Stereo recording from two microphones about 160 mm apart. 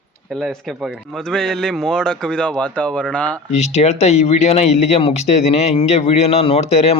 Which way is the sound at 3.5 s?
45° left (ahead or behind).